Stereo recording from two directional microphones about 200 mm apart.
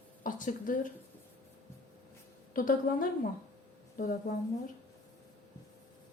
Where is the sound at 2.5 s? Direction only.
45° left (ahead or behind).